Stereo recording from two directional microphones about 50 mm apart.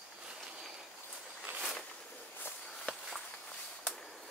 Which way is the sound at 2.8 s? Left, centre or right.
Centre.